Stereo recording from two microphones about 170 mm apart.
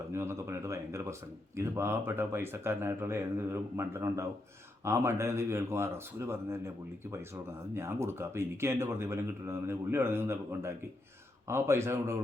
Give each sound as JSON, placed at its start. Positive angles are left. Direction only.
{"t": 0.1, "sound": "speech", "side_deg": -15}
{"t": 7.7, "sound": "speech", "side_deg": -15}